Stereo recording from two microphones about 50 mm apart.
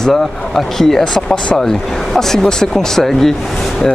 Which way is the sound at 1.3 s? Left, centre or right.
Centre.